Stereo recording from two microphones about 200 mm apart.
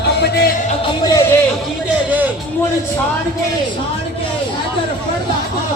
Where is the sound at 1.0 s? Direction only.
20° left (ahead or behind).